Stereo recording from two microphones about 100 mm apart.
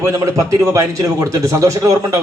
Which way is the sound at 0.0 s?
30° right (ahead or behind).